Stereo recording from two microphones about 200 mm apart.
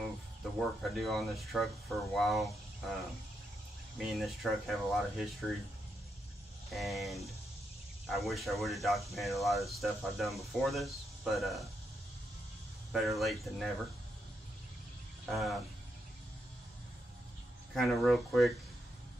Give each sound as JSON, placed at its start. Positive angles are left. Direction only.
{"t": 0.4, "sound": "speech", "side_deg": 0}
{"t": 4.0, "sound": "speech", "side_deg": 0}
{"t": 6.7, "sound": "speech", "side_deg": 0}
{"t": 12.9, "sound": "speech", "side_deg": 0}
{"t": 15.2, "sound": "speech", "side_deg": 0}
{"t": 17.7, "sound": "speech", "side_deg": 0}